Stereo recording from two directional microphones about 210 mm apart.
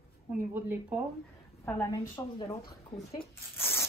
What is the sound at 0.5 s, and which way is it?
Speech, 10° right (ahead or behind).